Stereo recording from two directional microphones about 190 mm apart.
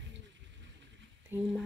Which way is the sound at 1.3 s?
10° right (ahead or behind).